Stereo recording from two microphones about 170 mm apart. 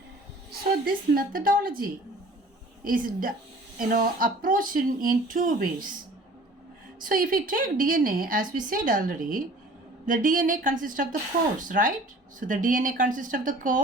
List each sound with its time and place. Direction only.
0.9 s a woman's voice: 60° right (ahead or behind)
7.0 s a woman's voice: 55° right (ahead or behind)